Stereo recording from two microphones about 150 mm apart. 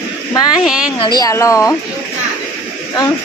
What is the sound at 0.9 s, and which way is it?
Speech, 30° left (ahead or behind).